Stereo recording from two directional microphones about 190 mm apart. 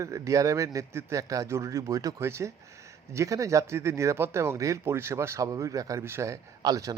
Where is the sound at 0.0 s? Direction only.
15° right (ahead or behind).